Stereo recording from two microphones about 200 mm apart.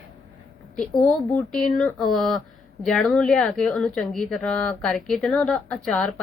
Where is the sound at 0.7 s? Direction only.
5° left (ahead or behind).